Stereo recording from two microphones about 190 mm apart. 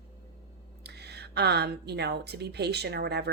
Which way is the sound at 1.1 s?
60° right (ahead or behind).